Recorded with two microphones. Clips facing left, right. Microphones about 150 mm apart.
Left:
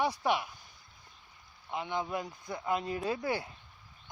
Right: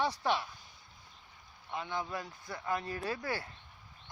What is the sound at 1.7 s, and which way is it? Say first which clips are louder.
Speech: left 3 dB; 20° left (ahead or behind).